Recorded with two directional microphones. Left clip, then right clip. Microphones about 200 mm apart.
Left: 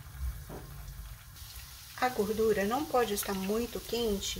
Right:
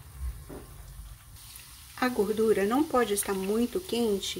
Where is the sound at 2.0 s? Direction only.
40° right (ahead or behind).